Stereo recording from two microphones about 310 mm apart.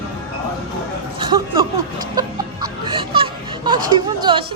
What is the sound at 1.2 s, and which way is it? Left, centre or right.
Speech, centre.